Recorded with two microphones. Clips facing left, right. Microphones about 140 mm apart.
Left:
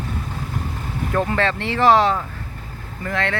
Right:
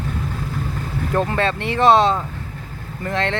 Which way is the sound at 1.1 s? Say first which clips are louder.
Even; 20° right (ahead or behind).